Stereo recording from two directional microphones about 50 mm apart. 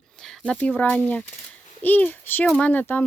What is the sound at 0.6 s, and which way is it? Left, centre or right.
A child's voice, left.